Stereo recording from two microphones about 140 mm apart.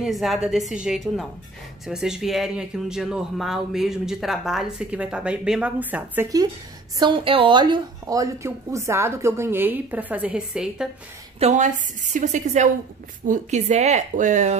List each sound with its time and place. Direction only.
0.0 s speech: centre (ahead or behind)
7.0 s a woman's voice: 35° right (ahead or behind); by 10.9 s 5° right (ahead or behind)
11.3 s a woman's voice: 55° right (ahead or behind)